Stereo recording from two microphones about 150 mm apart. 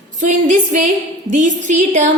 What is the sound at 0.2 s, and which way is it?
A woman's voice, 55° right (ahead or behind).